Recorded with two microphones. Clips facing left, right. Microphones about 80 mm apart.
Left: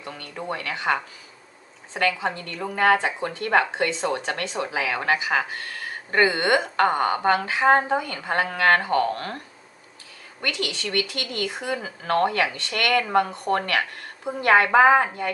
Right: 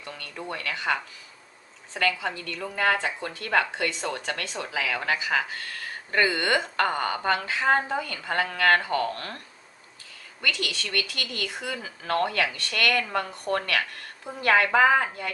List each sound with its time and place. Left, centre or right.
0.0 s speech: left
2.0 s a woman's voice: left
10.5 s a woman's voice: left